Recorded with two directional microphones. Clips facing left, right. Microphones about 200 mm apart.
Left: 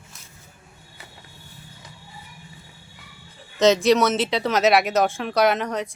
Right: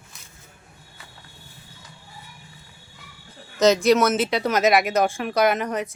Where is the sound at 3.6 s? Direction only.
Centre (ahead or behind).